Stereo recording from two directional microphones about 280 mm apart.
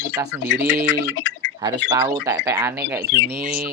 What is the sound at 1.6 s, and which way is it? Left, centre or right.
Speech, centre.